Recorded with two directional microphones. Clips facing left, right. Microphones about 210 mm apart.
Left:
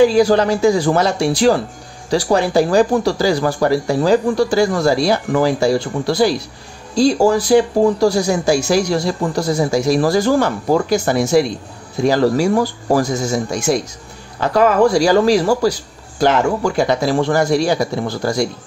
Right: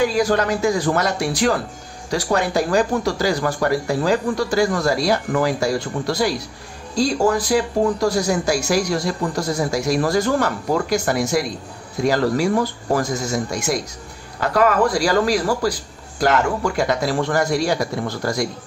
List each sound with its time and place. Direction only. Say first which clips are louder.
0.0 s speech: left 6 dB; 30° left (ahead or behind)
16.7 s speech: left 4 dB; 30° left (ahead or behind)